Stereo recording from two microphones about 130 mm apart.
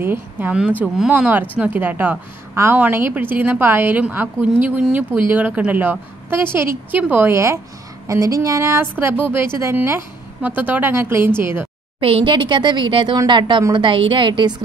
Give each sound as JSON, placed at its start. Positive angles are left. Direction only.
{"t": 0.0, "sound": "a woman's voice", "side_deg": -15}
{"t": 12.0, "sound": "a woman's voice", "side_deg": -45}